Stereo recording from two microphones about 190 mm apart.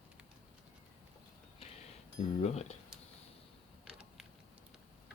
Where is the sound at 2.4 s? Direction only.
35° left (ahead or behind).